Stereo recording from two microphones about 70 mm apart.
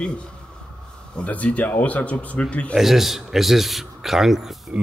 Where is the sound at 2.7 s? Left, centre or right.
Centre.